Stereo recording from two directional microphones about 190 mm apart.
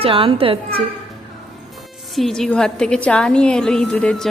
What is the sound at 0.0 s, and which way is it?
Speech, 30° right (ahead or behind).